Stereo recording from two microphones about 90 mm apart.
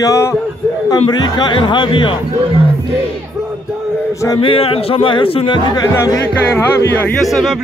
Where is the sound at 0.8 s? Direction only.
60° left (ahead or behind).